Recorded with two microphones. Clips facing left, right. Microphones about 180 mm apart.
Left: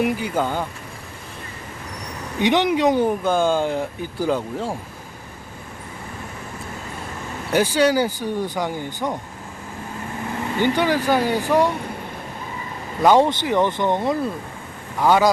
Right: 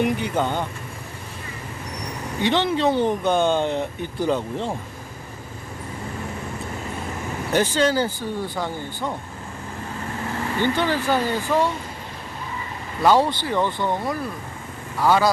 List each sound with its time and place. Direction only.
0.0 s speech: 5° left (ahead or behind)
2.4 s speech: 15° left (ahead or behind)
7.5 s speech: 10° left (ahead or behind)
10.6 s speech: 15° left (ahead or behind)
13.0 s speech: 20° left (ahead or behind)